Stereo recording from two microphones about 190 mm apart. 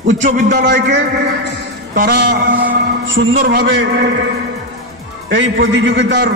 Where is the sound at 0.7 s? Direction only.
65° right (ahead or behind).